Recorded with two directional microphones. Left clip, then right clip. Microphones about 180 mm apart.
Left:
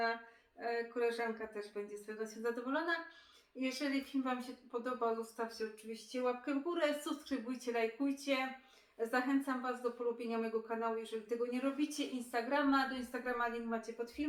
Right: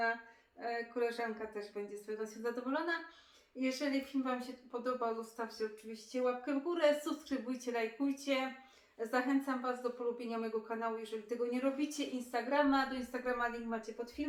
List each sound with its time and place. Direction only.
0.6 s speech: 10° right (ahead or behind)